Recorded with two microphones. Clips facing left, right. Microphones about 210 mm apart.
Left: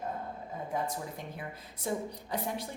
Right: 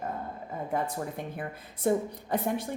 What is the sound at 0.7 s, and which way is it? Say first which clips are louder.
Speech: right 4 dB; 55° right (ahead or behind).